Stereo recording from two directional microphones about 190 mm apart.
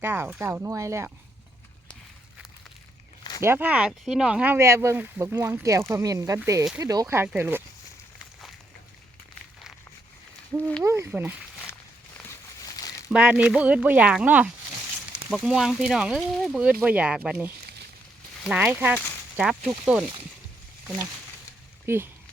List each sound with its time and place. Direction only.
0.0 s speech: 10° right (ahead or behind)
3.4 s speech: 10° right (ahead or behind)
10.8 s speech: 15° right (ahead or behind)
12.1 s a sound: 15° left (ahead or behind)
13.1 s speech: 5° right (ahead or behind)
21.8 s speech: 10° right (ahead or behind)